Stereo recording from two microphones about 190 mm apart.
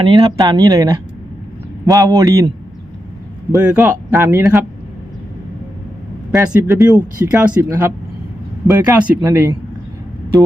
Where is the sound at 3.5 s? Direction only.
15° right (ahead or behind).